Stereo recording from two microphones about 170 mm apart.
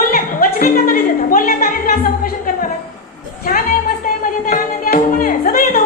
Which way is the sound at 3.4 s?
55° left (ahead or behind).